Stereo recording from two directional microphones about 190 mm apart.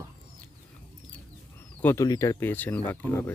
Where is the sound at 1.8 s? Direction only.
15° left (ahead or behind).